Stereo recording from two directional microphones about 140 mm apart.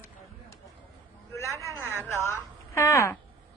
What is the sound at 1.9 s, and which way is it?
A woman's voice, 20° left (ahead or behind).